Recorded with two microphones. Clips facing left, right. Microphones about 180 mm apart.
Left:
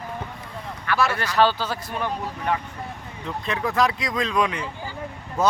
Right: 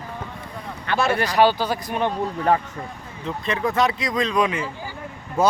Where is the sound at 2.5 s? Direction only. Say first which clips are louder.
Right 6 dB; 40° right (ahead or behind).